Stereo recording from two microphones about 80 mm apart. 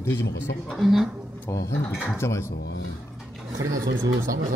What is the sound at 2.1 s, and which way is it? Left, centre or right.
Speech, left.